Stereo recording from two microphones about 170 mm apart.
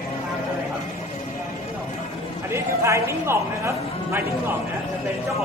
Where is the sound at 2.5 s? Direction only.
15° right (ahead or behind).